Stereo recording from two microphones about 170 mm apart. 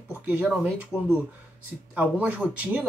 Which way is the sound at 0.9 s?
15° left (ahead or behind).